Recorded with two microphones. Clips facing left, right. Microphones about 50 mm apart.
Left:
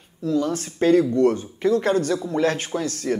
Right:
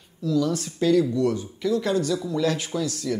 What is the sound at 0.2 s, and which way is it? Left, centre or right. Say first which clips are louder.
Speech: left 1 dB; left.